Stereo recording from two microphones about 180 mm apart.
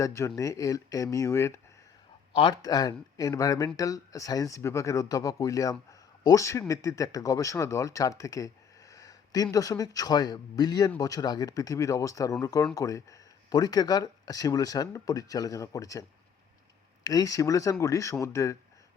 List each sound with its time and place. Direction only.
0.0 s speech: 15° left (ahead or behind)
2.3 s speech: 25° left (ahead or behind)